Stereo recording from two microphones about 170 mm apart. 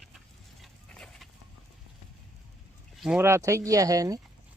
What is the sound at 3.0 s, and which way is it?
Speech, 5° right (ahead or behind).